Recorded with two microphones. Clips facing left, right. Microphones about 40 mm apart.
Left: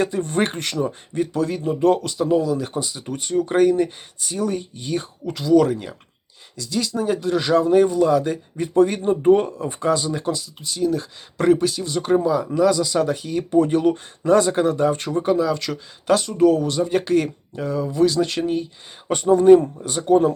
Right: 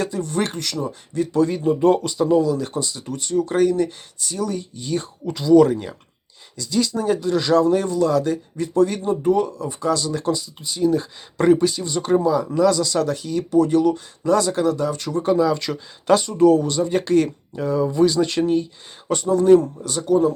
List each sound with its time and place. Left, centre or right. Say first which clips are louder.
0.0 s speech: left 2 dB; left
1.3 s speech: right 8 dB; centre; by 4.9 s left
4.9 s speech: right 1 dB; centre
10.3 s speech: right 1 dB; centre; by 15.2 s left
15.2 s speech: right 3 dB; centre
19.0 s speech: left 3 dB; centre
20.1 s speech: left 1 dB; left